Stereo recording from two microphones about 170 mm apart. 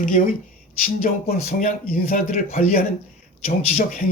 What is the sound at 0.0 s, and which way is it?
Speech, 50° left (ahead or behind).